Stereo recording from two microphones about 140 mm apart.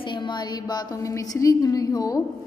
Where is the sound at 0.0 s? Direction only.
35° left (ahead or behind).